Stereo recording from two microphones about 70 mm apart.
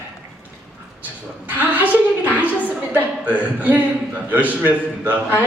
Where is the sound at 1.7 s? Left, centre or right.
Right.